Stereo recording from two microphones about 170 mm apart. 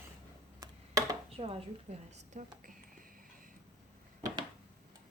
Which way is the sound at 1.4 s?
35° right (ahead or behind).